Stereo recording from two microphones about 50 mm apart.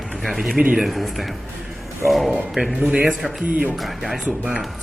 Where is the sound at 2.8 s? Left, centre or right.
Right.